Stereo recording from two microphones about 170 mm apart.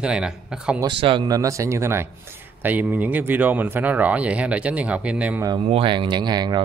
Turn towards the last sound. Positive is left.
turn(degrees=-25)  # may be behind; listen again after turning